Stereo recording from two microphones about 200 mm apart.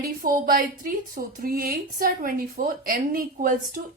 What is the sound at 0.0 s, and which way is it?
A woman's voice, 45° right (ahead or behind).